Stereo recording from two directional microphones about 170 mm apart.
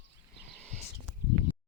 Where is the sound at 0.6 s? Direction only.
5° left (ahead or behind).